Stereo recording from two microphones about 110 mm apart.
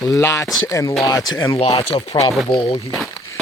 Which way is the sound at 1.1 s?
40° left (ahead or behind).